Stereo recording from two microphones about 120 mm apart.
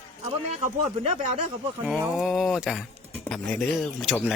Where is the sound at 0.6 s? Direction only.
90° right.